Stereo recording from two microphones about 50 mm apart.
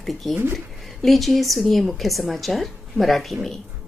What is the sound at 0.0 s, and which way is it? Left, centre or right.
A woman's voice, centre.